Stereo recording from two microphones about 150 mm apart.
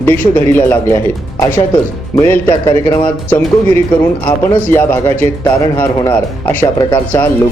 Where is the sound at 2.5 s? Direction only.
30° left (ahead or behind).